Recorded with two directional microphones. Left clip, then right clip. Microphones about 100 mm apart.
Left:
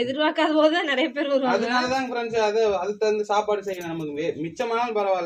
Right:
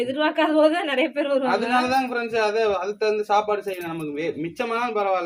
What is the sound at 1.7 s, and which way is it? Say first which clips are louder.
A man's voice: right 3 dB; 25° right (ahead or behind).